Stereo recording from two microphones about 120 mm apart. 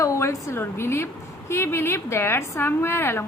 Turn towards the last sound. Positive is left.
turn(degrees=20)  # may be behind; listen again after turning